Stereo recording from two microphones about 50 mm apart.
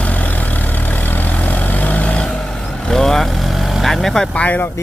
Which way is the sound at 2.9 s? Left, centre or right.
Centre.